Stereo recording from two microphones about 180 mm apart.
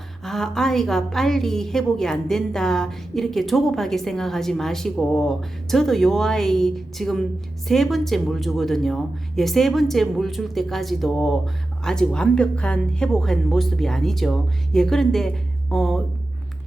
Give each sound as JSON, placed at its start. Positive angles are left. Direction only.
{"t": 0.3, "sound": "a woman's voice", "side_deg": 0}